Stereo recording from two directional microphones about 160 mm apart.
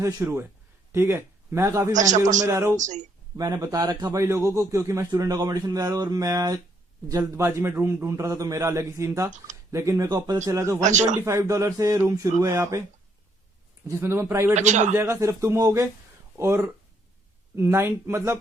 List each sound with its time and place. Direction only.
0.0 s speech: 15° right (ahead or behind)
2.0 s a man's voice: 50° right (ahead or behind)
2.4 s speech: 15° right (ahead or behind)
2.7 s a man's voice: 50° right (ahead or behind)
3.3 s a man's voice: 25° right (ahead or behind)
10.8 s a man's voice: 50° right (ahead or behind)
11.3 s a man's voice: 20° right (ahead or behind)
13.8 s speech: 15° right (ahead or behind)
14.5 s a man's voice: 45° right (ahead or behind)
14.9 s speech: 15° right (ahead or behind)